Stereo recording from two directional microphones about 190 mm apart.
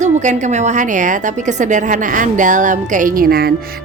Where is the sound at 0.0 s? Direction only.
40° right (ahead or behind).